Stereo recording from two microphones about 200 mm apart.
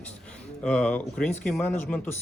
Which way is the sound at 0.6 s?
5° left (ahead or behind).